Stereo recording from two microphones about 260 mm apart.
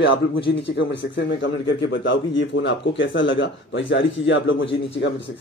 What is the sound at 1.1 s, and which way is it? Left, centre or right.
A man's voice, left.